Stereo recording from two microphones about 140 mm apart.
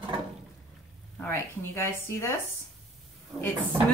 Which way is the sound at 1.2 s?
20° left (ahead or behind).